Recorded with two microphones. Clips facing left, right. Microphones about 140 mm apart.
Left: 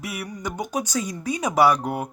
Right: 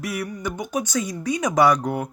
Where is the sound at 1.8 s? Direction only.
10° left (ahead or behind).